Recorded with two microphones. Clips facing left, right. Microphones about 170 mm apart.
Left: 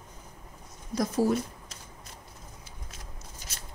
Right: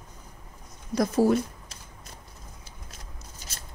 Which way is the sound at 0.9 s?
65° right (ahead or behind).